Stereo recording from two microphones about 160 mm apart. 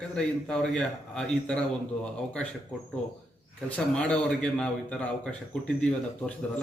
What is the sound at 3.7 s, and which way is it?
A man's voice, 5° left (ahead or behind).